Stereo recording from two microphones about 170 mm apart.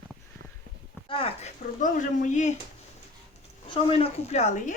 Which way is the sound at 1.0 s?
30° left (ahead or behind).